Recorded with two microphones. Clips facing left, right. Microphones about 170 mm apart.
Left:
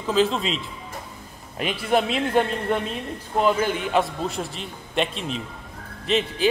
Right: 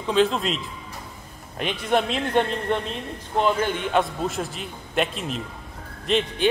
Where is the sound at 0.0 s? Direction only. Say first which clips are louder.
Even; centre (ahead or behind).